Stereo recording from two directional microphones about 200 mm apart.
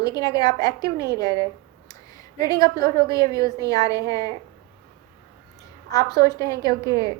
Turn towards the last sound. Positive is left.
turn(degrees=15)  # may be behind; listen again after turning